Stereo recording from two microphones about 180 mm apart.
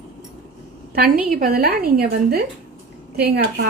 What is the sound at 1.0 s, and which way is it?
Speech, 50° right (ahead or behind).